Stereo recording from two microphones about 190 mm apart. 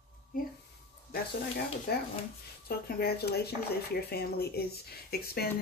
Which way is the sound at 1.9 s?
55° left (ahead or behind).